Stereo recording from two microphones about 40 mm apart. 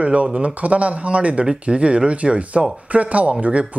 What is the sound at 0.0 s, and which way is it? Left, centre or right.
Speech, right.